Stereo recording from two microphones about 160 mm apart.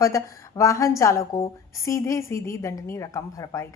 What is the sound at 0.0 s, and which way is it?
A woman's voice, 20° left (ahead or behind).